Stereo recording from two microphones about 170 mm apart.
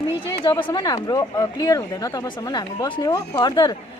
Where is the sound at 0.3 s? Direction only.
25° left (ahead or behind).